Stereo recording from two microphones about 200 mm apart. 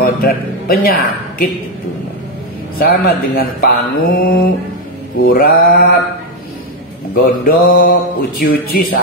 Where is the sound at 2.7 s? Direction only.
50° left (ahead or behind).